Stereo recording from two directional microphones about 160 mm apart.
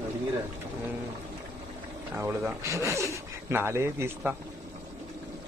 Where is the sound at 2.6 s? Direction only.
20° right (ahead or behind).